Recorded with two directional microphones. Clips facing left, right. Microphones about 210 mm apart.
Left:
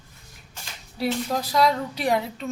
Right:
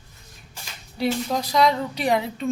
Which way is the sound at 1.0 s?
5° left (ahead or behind).